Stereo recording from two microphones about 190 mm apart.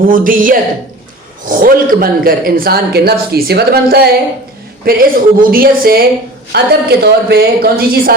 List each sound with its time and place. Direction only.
0.1 s a woman's voice: 45° right (ahead or behind)